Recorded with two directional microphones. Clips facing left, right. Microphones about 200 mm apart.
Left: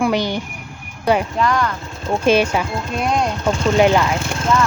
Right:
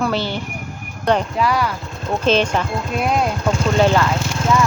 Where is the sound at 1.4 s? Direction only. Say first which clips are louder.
Even; 5° right (ahead or behind).